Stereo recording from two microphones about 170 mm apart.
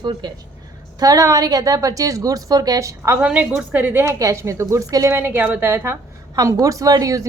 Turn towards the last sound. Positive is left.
turn(degrees=-20)  # may be behind; listen again after turning